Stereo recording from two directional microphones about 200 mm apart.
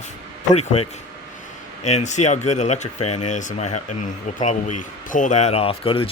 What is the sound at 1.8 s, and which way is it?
A man's voice, 35° left (ahead or behind).